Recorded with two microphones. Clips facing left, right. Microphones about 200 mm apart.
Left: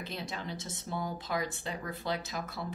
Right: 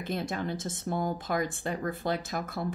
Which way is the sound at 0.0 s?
50° right (ahead or behind).